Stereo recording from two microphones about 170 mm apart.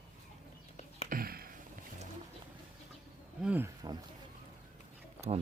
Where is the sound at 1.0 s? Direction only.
60° right (ahead or behind).